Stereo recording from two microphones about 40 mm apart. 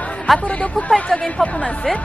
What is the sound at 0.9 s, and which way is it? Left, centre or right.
Speech, centre.